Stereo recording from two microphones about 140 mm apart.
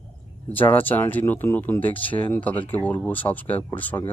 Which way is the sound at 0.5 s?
15° left (ahead or behind).